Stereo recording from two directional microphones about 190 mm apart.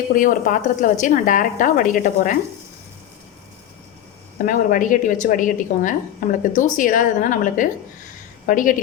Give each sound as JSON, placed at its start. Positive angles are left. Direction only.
{"t": 0.1, "sound": "a woman's voice", "side_deg": 45}
{"t": 4.4, "sound": "a woman's voice", "side_deg": 45}